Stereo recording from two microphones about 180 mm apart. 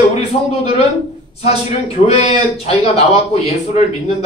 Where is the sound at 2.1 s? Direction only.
35° left (ahead or behind).